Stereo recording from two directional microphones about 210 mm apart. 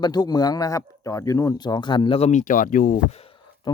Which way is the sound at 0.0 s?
20° left (ahead or behind).